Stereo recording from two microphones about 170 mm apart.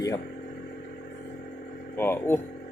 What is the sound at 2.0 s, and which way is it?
Speech, 15° left (ahead or behind).